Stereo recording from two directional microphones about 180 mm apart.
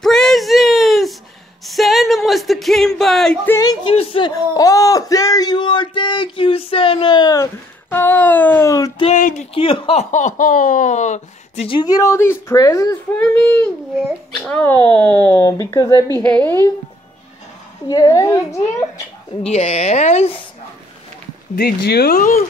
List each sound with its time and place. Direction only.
0.0 s a sound: centre (ahead or behind)
3.5 s speech: 20° left (ahead or behind)
4.3 s speech: 20° left (ahead or behind)
7.9 s speech: 10° left (ahead or behind)
9.0 s speech: 40° left (ahead or behind); by 15.4 s 10° left (ahead or behind)
15.4 s speech: 20° left (ahead or behind)
16.2 s speech: 10° left (ahead or behind)
17.8 s speech: 20° left (ahead or behind)
19.4 s speech: 35° left (ahead or behind)
21.5 s speech: 65° left (ahead or behind)